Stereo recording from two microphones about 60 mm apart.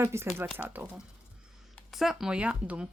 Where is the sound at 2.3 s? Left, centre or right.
Centre.